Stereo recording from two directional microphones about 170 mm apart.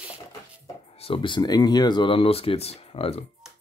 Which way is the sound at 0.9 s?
35° left (ahead or behind).